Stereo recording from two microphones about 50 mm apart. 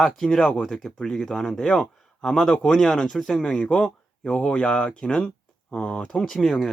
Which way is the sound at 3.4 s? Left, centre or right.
Centre.